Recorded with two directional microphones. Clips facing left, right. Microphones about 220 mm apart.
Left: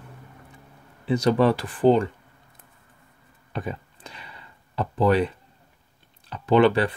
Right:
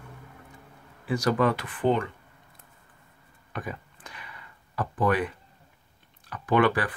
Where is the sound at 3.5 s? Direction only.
25° left (ahead or behind).